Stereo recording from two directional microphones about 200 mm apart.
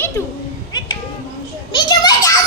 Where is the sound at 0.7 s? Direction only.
20° left (ahead or behind).